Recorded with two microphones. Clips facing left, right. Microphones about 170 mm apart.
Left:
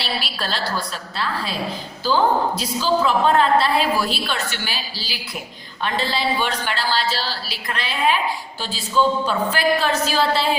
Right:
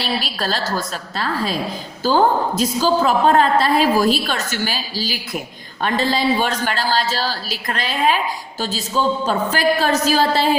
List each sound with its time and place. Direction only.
0.0 s a woman's voice: 45° right (ahead or behind)
9.2 s a woman's voice: 40° right (ahead or behind)